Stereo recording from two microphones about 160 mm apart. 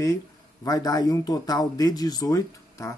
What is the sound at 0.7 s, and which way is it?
Speech, 25° left (ahead or behind).